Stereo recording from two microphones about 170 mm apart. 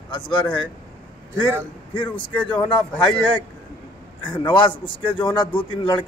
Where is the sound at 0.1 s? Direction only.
25° left (ahead or behind).